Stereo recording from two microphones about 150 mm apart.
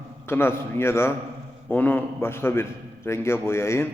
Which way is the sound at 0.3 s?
15° left (ahead or behind).